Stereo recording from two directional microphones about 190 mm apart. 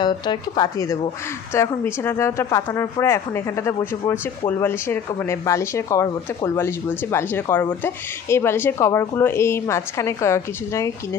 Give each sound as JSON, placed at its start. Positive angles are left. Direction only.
{"t": 0.0, "sound": "speech", "side_deg": 20}